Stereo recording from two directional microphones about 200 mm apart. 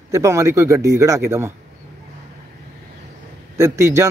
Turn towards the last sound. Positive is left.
turn(degrees=-15)  # may be behind; listen again after turning